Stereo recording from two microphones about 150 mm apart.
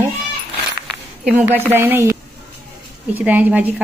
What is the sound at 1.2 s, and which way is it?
Speech, 10° right (ahead or behind).